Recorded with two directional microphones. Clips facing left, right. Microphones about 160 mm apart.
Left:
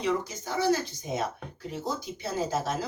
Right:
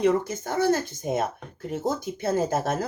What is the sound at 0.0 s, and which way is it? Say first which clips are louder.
Speech: right 7 dB; 50° right (ahead or behind).